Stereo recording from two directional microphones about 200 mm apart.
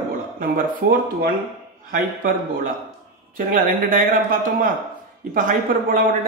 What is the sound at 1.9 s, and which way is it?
A man's voice, 40° right (ahead or behind).